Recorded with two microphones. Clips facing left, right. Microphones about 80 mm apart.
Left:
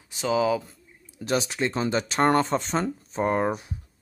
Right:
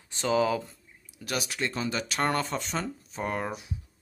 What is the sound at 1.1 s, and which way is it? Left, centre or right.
Speech, left.